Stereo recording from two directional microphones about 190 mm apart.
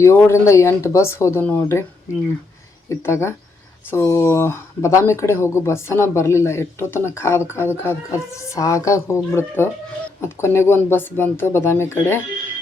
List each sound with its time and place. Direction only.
0.0 s speech: 15° left (ahead or behind)
2.9 s speech: 15° left (ahead or behind)